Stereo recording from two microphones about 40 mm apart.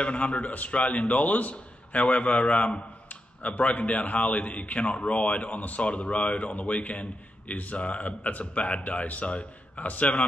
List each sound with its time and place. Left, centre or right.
0.0 s a man's voice: left
1.5 s a man's voice: left